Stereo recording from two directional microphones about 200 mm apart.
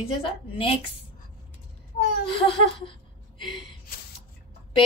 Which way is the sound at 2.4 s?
25° left (ahead or behind).